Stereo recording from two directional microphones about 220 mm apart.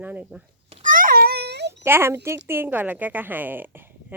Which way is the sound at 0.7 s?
35° right (ahead or behind).